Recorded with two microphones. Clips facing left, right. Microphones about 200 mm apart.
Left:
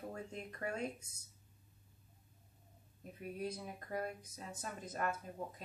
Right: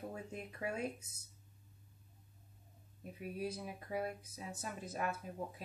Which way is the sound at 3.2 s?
5° right (ahead or behind).